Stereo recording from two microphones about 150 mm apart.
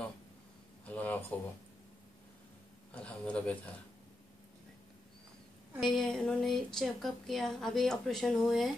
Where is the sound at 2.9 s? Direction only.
10° left (ahead or behind).